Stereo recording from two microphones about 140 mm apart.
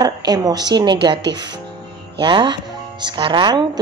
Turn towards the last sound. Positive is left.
turn(degrees=-30)  # may be behind; listen again after turning